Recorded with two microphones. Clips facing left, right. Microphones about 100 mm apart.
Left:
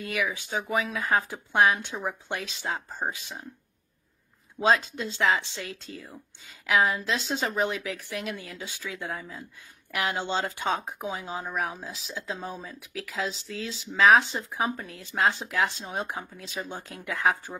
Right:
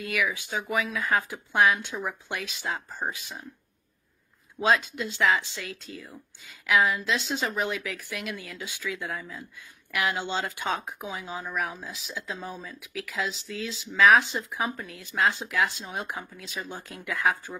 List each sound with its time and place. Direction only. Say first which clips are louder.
0.0 s speech: right 1 dB; 30° left (ahead or behind)
4.6 s speech: left 1 dB; 30° left (ahead or behind)